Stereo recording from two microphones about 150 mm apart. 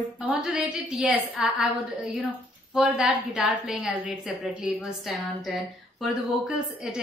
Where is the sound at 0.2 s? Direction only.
5° right (ahead or behind).